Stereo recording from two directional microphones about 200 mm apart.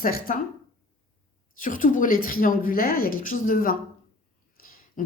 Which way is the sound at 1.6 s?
40° left (ahead or behind).